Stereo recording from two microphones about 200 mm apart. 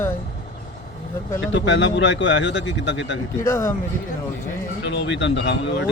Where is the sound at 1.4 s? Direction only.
70° left (ahead or behind).